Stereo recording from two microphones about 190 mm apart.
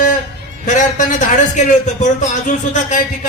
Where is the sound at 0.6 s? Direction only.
40° left (ahead or behind).